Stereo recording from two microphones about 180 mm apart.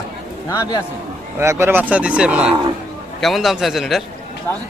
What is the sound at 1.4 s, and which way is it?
Speech, 15° right (ahead or behind).